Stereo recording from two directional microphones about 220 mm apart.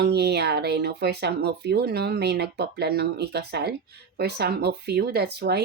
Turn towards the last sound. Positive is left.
turn(degrees=-50)  # may be behind; listen again after turning